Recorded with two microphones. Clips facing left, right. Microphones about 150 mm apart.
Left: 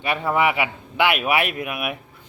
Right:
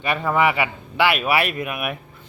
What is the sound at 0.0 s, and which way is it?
Speech, 10° left (ahead or behind).